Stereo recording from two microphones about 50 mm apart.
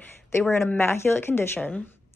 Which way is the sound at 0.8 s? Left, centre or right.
Left.